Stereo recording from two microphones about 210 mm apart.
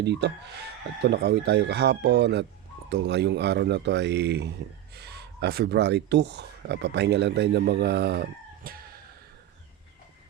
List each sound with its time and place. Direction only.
0.0 s speech: 55° right (ahead or behind)